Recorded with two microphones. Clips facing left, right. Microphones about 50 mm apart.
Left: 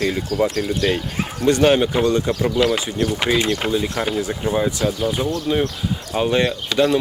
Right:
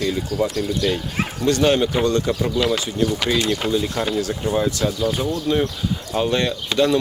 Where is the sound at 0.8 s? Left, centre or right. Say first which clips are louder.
Left 2 dB; left.